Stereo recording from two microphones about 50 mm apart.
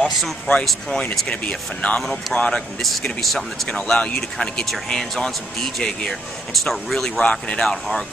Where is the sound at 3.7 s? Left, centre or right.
Centre.